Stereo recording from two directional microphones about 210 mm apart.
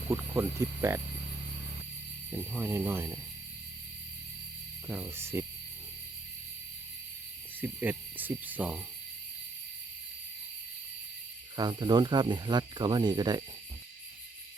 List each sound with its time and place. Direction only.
0.1 s cricket: 10° right (ahead or behind)
2.3 s cricket: 10° right (ahead or behind)
4.9 s cricket: 10° right (ahead or behind)
7.6 s cricket: 10° right (ahead or behind)
11.5 s speech: 20° right (ahead or behind)